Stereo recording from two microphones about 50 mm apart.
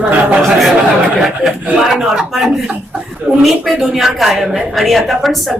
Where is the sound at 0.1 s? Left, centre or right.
Right.